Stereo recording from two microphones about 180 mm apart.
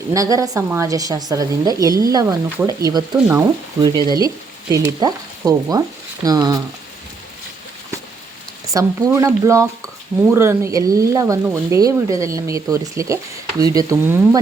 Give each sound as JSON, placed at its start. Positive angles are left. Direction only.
{"t": 0.1, "sound": "a woman's voice", "side_deg": -20}
{"t": 8.7, "sound": "a woman's voice", "side_deg": -15}